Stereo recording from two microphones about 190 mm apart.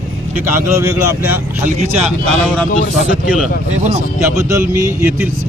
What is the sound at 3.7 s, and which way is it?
Speech, 40° right (ahead or behind).